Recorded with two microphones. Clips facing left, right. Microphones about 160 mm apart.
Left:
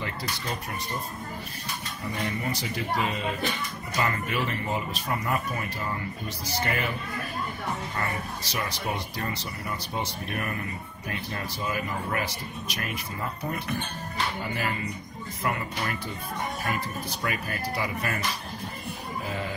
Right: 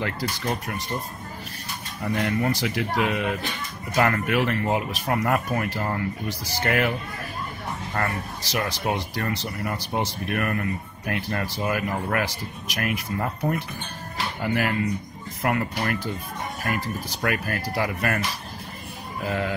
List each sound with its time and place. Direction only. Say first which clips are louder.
0.0 s speech: right 6 dB; 60° right (ahead or behind)
2.0 s speech: right 7 dB; 70° right (ahead or behind)
7.9 s speech: right 4 dB; 70° right (ahead or behind)
14.1 s music: right 5 dB; 65° right (ahead or behind)
15.4 s speech: right 5 dB; 60° right (ahead or behind)
19.2 s sheep: right 8 dB; 65° right (ahead or behind)